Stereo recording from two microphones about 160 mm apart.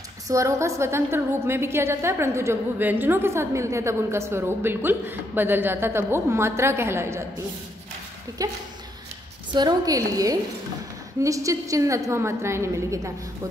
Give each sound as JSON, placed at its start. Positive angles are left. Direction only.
{"t": 0.3, "sound": "a woman's voice", "side_deg": -20}